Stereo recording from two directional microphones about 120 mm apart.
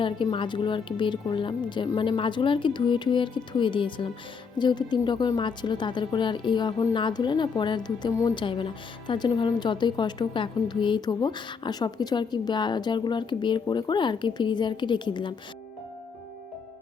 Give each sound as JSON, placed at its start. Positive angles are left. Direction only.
{"t": 0.0, "sound": "a woman's voice", "side_deg": 45}